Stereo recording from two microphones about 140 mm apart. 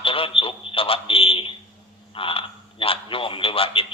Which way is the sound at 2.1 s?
40° left (ahead or behind).